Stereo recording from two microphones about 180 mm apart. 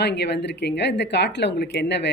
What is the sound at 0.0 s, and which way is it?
Speech, 70° left (ahead or behind).